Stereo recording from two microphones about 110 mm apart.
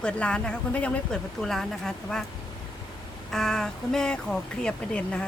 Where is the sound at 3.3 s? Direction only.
5° left (ahead or behind).